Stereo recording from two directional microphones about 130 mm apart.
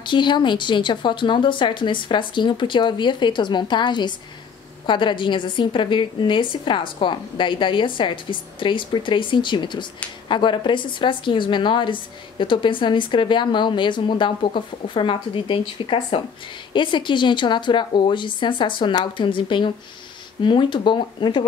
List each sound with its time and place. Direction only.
0.0 s a woman's voice: 35° left (ahead or behind)